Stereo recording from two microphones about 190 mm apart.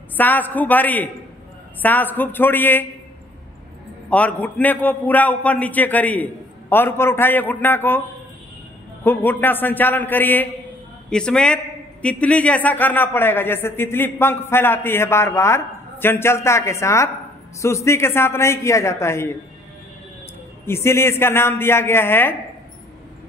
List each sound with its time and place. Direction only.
0.2 s a man's voice: 10° left (ahead or behind)
4.1 s a man's voice: 5° left (ahead or behind)
9.0 s a man's voice: 10° left (ahead or behind)
20.6 s a man's voice: 15° left (ahead or behind)